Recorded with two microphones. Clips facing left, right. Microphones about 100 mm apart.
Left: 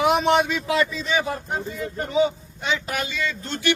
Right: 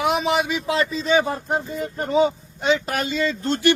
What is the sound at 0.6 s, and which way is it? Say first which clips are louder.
Speech: right 1 dB; 30° right (ahead or behind).